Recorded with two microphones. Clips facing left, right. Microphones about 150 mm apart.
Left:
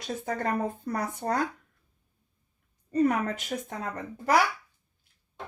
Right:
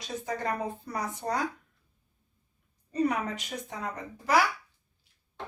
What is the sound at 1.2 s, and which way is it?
Speech, 40° left (ahead or behind).